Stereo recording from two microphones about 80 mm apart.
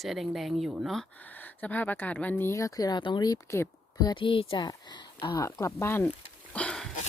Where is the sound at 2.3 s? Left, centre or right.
Left.